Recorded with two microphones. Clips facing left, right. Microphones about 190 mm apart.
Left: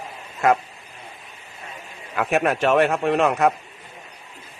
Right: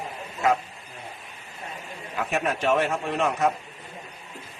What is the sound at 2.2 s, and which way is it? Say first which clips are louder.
A man's voice: left 6 dB; 70° left (ahead or behind).